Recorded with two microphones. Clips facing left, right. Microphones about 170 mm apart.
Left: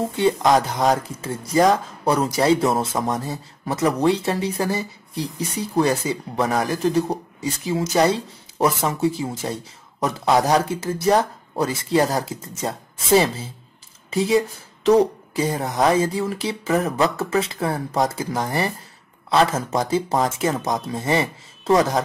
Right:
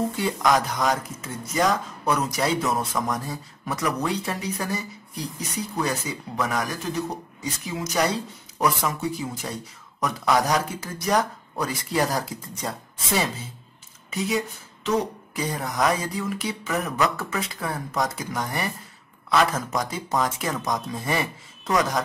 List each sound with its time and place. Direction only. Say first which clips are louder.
0.1 s speech: left 5 dB; 25° left (ahead or behind)